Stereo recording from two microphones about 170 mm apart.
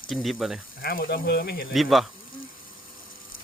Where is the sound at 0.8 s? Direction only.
65° left (ahead or behind).